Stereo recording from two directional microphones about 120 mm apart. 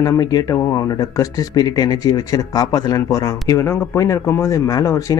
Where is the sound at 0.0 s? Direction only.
35° left (ahead or behind).